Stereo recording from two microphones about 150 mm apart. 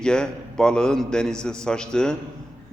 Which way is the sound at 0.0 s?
5° left (ahead or behind).